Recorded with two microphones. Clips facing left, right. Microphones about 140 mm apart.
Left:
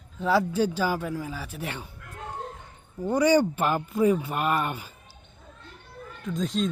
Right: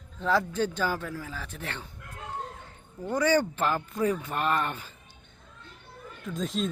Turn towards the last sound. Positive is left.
turn(degrees=0)  # may be behind; listen again after turning